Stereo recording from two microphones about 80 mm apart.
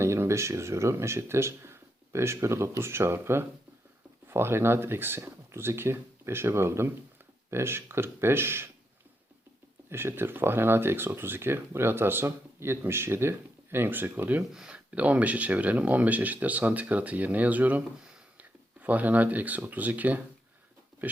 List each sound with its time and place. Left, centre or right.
0.0 s speech: right
9.9 s speech: right
14.5 s speech: centre
14.8 s speech: centre